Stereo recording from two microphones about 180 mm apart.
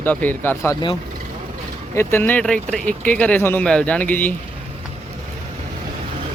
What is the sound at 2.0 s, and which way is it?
Speech, 15° left (ahead or behind).